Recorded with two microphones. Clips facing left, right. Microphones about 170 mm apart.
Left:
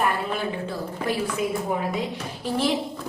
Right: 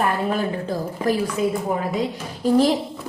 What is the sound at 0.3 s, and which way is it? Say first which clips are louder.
Speech: right 5 dB; 40° right (ahead or behind).